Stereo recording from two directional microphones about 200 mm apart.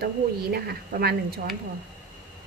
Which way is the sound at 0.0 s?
55° right (ahead or behind).